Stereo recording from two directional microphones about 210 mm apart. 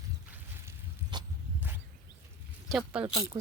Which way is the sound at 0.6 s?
20° right (ahead or behind).